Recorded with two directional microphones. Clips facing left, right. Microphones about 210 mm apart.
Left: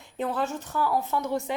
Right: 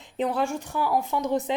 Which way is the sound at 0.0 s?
15° right (ahead or behind).